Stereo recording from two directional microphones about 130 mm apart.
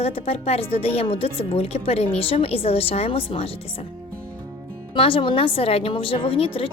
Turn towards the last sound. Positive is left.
turn(degrees=45)  # may be behind; listen again after turning